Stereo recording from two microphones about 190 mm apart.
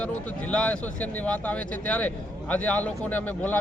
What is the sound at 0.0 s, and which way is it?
Speech, 5° left (ahead or behind).